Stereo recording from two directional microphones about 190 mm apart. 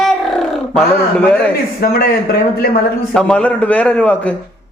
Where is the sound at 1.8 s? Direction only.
50° left (ahead or behind).